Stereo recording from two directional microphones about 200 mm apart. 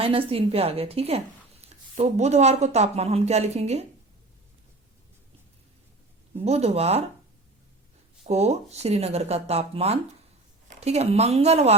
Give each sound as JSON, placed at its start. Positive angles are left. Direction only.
{"t": 0.0, "sound": "a woman's voice", "side_deg": -25}
{"t": 6.4, "sound": "speech", "side_deg": -30}
{"t": 8.3, "sound": "speech", "side_deg": -30}